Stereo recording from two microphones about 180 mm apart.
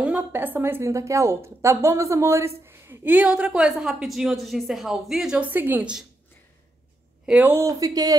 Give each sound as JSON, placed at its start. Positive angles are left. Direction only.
{"t": 0.0, "sound": "a woman's voice", "side_deg": -10}
{"t": 7.2, "sound": "a woman's voice", "side_deg": -10}